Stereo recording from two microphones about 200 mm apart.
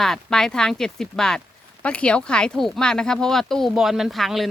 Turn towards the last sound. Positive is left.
turn(degrees=0)  # may be behind; listen again after turning